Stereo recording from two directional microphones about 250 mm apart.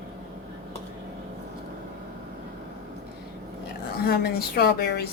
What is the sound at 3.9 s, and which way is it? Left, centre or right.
A woman's voice, left.